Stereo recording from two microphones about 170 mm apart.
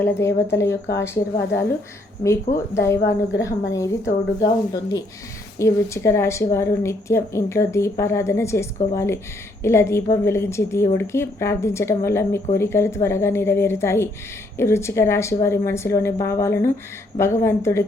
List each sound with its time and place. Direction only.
0.0 s speech: 15° left (ahead or behind)
2.2 s a woman's voice: 15° left (ahead or behind)